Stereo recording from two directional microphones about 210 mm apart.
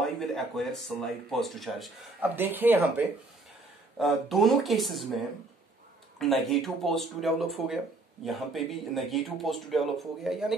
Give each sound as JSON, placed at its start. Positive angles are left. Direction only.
{"t": 0.0, "sound": "speech", "side_deg": 0}